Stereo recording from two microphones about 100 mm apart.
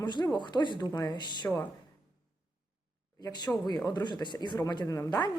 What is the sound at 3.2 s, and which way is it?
A man's voice, 40° left (ahead or behind).